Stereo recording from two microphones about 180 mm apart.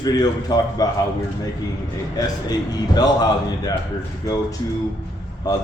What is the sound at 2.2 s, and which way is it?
A man's voice, 20° left (ahead or behind).